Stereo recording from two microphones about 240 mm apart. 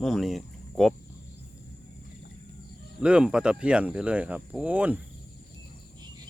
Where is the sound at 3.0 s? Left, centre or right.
Centre.